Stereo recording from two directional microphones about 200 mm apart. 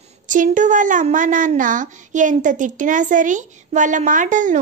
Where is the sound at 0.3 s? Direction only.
40° right (ahead or behind).